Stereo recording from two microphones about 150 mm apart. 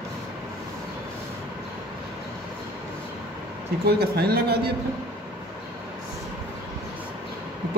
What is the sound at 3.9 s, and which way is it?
Speech, 90° right.